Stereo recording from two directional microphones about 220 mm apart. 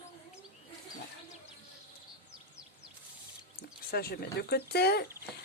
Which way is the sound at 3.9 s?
45° left (ahead or behind).